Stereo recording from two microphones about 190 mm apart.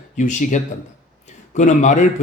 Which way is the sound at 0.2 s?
40° left (ahead or behind).